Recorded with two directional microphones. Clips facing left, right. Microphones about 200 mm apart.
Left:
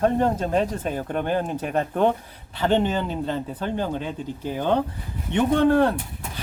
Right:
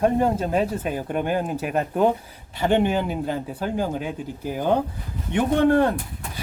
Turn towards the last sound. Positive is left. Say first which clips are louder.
# right 1 dB
turn(degrees=-10)  # may be behind; listen again after turning